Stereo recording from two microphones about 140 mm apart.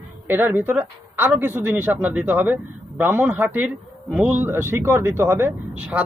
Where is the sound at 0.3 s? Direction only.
15° right (ahead or behind).